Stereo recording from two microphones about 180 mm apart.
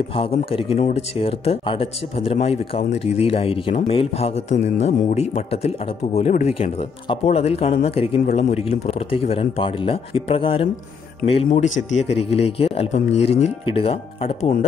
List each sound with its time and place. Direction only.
0.1 s speech: 30° left (ahead or behind)